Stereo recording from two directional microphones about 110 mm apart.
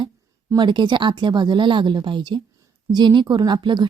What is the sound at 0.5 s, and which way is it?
Speech, 45° right (ahead or behind).